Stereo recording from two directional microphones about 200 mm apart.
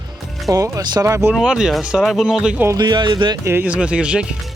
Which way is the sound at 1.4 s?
Centre (ahead or behind).